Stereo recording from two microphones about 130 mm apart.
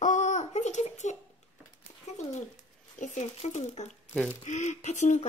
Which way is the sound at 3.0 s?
65° left (ahead or behind).